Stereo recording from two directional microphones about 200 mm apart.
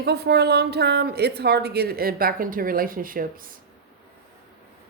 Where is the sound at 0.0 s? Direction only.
55° right (ahead or behind).